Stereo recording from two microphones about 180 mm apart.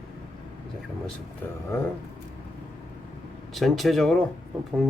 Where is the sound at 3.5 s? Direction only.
Centre (ahead or behind).